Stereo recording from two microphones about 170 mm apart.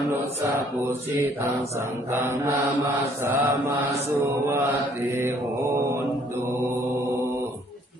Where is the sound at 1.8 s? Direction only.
15° right (ahead or behind).